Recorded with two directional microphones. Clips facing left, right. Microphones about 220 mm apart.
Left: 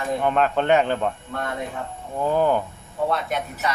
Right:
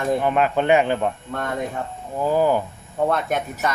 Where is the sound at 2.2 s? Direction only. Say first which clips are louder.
Right 1 dB; 5° right (ahead or behind).